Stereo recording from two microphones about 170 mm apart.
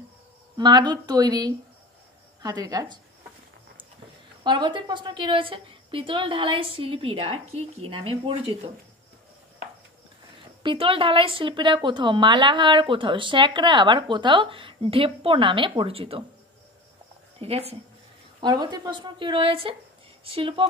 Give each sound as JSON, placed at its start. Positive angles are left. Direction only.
{"t": 0.6, "sound": "a woman's voice", "side_deg": -25}
{"t": 4.4, "sound": "a woman's voice", "side_deg": -25}
{"t": 10.6, "sound": "a woman's voice", "side_deg": -30}
{"t": 17.4, "sound": "a woman's voice", "side_deg": -35}
{"t": 18.4, "sound": "a woman's voice", "side_deg": -25}